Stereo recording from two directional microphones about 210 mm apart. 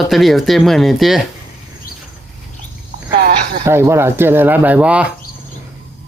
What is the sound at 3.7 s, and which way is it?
Speech, 10° right (ahead or behind).